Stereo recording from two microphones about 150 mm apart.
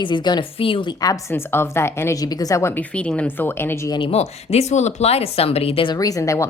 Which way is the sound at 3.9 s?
40° left (ahead or behind).